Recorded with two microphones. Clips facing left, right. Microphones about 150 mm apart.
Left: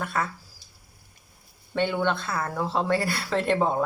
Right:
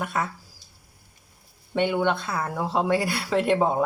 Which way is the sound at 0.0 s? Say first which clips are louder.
Right 1 dB; 15° right (ahead or behind).